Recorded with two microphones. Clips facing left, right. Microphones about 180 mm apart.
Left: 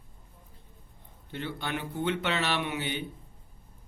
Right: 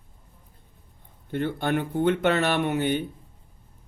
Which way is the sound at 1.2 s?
50° right (ahead or behind).